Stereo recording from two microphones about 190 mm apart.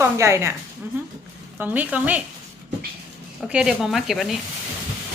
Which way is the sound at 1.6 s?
10° right (ahead or behind).